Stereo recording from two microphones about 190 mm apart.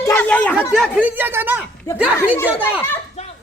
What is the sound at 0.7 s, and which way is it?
Speech, 5° right (ahead or behind).